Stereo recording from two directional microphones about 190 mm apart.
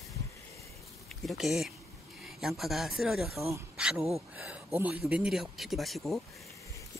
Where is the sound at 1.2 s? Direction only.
Centre (ahead or behind).